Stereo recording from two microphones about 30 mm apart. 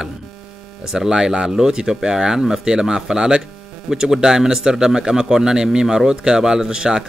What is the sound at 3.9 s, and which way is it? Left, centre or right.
Speech, right.